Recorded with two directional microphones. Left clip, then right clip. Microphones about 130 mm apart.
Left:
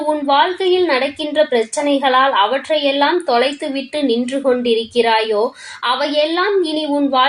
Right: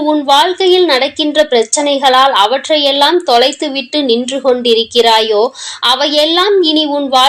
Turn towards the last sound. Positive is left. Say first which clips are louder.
# right 5 dB
turn(degrees=-35)  # may be behind; listen again after turning